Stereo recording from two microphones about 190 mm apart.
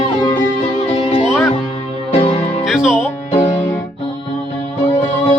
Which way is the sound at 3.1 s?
30° left (ahead or behind).